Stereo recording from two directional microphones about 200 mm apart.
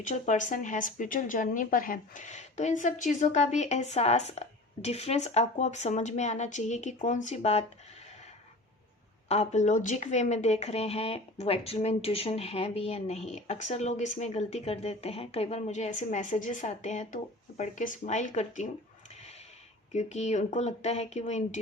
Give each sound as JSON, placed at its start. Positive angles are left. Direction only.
{"t": 0.0, "sound": "speech", "side_deg": 40}
{"t": 9.3, "sound": "speech", "side_deg": 35}
{"t": 19.9, "sound": "speech", "side_deg": 35}